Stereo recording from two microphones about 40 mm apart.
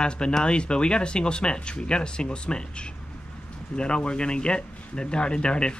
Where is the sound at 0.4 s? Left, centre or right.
Left.